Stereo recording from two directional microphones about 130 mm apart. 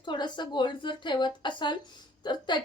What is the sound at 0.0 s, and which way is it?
A woman's voice, 35° left (ahead or behind).